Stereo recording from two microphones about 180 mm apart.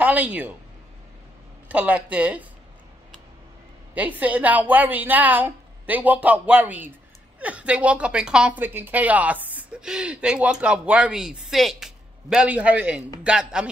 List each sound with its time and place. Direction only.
0.0 s a woman's voice: 10° right (ahead or behind)
1.7 s a woman's voice: 5° right (ahead or behind)
3.9 s a woman's voice: 10° right (ahead or behind)